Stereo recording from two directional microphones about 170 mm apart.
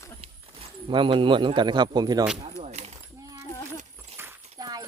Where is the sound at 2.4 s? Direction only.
40° right (ahead or behind).